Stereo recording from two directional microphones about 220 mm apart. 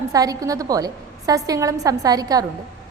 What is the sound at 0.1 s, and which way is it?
A woman's voice, 15° right (ahead or behind).